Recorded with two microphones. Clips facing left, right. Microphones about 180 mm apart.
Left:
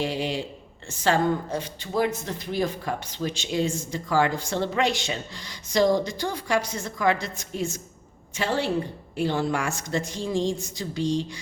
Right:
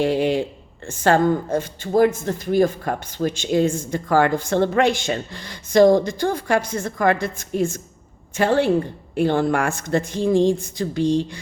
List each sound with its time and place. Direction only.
0.0 s a man's voice: 55° right (ahead or behind)